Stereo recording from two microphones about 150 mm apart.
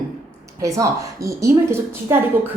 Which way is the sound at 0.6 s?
20° right (ahead or behind).